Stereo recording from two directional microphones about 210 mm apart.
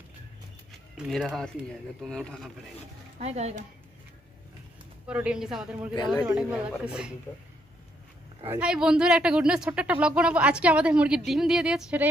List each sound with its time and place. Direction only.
0.7 s a sound: centre (ahead or behind)
2.0 s speech: 5° left (ahead or behind)
3.2 s speech: 30° right (ahead or behind)
5.0 s speech: 5° right (ahead or behind)
8.5 s speech: 5° right (ahead or behind)